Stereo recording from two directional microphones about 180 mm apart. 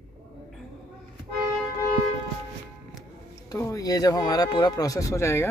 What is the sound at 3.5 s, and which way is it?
Speech, 20° left (ahead or behind).